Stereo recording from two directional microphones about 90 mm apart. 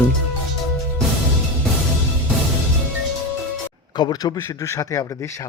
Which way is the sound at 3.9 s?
50° left (ahead or behind).